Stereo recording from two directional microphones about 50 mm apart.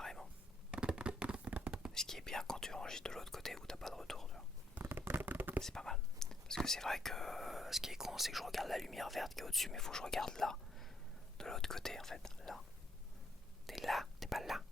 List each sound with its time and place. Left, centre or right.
0.0 s whispering: centre
0.7 s a sound: right
1.9 s speech: centre
4.9 s a sound: right
5.6 s whispering: centre
6.7 s speech: centre
11.3 s whispering: centre
13.7 s whispering: centre